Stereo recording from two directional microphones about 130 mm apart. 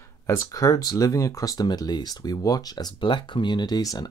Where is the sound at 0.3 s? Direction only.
25° left (ahead or behind).